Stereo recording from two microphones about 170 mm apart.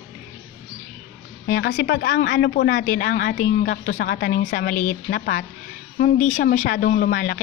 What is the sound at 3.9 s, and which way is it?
Speech, 65° left (ahead or behind).